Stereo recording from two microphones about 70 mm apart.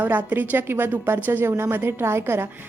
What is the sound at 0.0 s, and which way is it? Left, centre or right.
A woman's voice, right.